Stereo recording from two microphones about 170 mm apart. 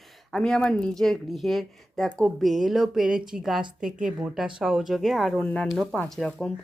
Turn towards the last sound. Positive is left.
turn(degrees=5)  # may be behind; listen again after turning